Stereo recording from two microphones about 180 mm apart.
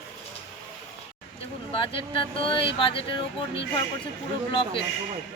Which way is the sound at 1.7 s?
30° left (ahead or behind).